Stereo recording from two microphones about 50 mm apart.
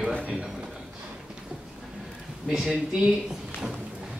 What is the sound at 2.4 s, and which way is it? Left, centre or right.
Speech, centre.